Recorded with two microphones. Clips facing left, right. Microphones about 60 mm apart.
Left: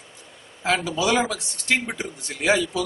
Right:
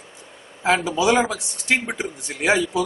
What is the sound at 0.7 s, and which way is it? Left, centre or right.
A man's voice, centre.